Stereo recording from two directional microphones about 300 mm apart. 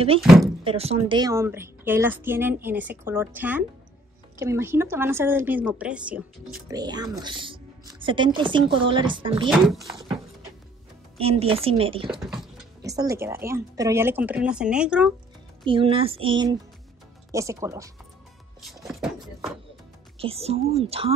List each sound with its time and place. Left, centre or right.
0.2 s speech: centre
0.7 s speech: centre
9.5 s speech: centre
11.1 s a woman's voice: centre
12.1 s speech: centre
15.6 s speech: centre
18.6 s music: centre
20.2 s a woman's voice: centre